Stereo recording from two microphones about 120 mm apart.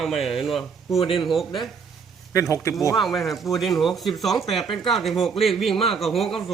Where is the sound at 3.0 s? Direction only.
Centre (ahead or behind).